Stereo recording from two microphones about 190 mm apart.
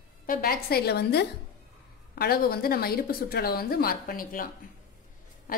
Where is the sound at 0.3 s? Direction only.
50° left (ahead or behind).